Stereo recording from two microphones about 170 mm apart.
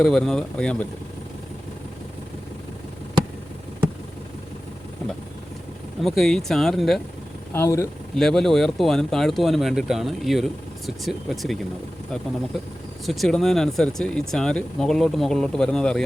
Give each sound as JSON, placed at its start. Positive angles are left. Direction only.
{"t": 0.0, "sound": "speech", "side_deg": 0}
{"t": 6.0, "sound": "speech", "side_deg": 0}
{"t": 7.5, "sound": "speech", "side_deg": 15}
{"t": 8.1, "sound": "speech", "side_deg": 5}
{"t": 13.1, "sound": "speech", "side_deg": 0}